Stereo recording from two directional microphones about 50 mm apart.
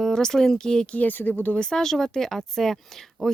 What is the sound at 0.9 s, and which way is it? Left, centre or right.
Speech, left.